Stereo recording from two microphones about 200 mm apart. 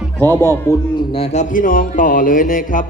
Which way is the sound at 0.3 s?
10° left (ahead or behind).